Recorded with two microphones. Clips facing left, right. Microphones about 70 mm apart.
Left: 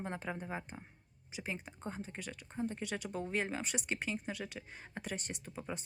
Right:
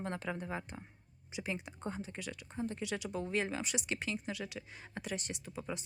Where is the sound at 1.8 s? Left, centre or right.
Centre.